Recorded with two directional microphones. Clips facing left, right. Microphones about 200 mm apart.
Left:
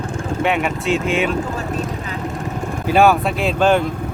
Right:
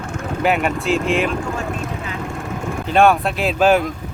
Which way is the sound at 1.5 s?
35° left (ahead or behind).